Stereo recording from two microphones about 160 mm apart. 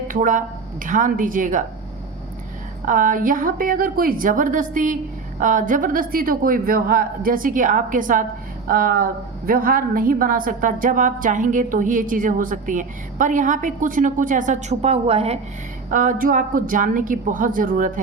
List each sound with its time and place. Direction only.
0.1 s a woman's voice: 55° right (ahead or behind)
2.8 s a woman's voice: 55° right (ahead or behind); by 15.4 s 40° right (ahead or behind)
15.9 s a woman's voice: 55° right (ahead or behind)